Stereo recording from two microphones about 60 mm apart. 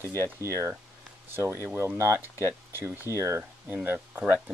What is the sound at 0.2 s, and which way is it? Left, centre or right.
Speech, right.